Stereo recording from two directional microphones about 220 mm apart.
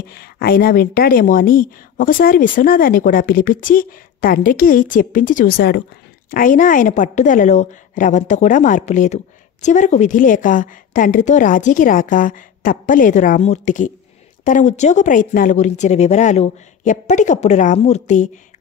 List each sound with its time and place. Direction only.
0.1 s a woman's voice: 45° left (ahead or behind)